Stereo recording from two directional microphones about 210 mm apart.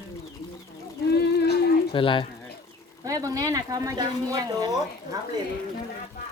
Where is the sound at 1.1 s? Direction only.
50° left (ahead or behind).